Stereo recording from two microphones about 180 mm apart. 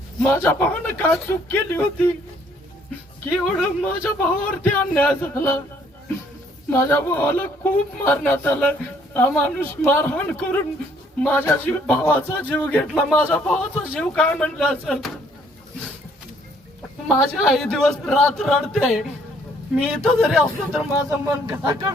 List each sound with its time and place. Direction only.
0.2 s a man's voice: 10° left (ahead or behind)
3.2 s a man's voice: 5° left (ahead or behind)
6.7 s a man's voice: 15° left (ahead or behind)
17.2 s a man's voice: centre (ahead or behind)
21.2 s speech: 15° right (ahead or behind)